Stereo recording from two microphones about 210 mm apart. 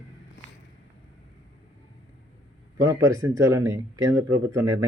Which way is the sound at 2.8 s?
15° right (ahead or behind).